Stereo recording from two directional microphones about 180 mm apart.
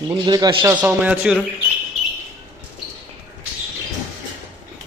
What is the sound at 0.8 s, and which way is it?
Speech, 10° right (ahead or behind).